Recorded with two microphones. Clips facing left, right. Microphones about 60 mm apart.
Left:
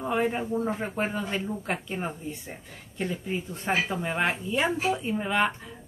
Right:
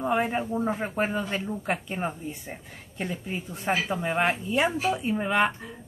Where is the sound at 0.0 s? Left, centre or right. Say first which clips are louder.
Right 1 dB; centre.